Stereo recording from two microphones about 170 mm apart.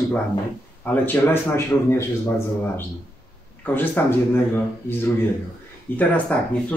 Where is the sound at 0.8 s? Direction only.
10° left (ahead or behind).